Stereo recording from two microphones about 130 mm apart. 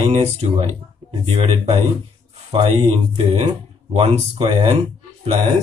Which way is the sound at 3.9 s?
45° right (ahead or behind).